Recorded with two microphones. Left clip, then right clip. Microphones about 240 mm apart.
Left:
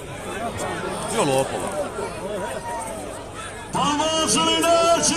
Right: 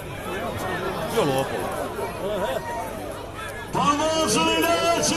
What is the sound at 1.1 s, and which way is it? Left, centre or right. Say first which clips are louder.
Speech: left 2 dB; left.